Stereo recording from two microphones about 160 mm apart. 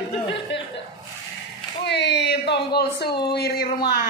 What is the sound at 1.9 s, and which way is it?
Speech, 90° left.